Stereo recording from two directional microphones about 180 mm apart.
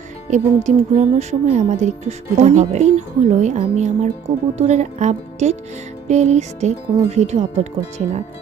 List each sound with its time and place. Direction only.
0.3 s speech: 40° right (ahead or behind)